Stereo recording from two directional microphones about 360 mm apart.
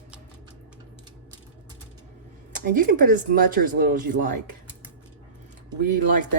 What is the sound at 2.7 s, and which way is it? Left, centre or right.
Speech, right.